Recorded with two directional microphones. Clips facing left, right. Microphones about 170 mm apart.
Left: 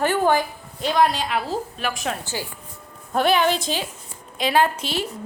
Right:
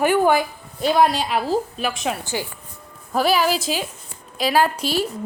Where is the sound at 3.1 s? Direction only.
5° right (ahead or behind).